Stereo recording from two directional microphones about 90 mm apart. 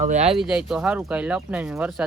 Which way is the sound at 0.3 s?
5° right (ahead or behind).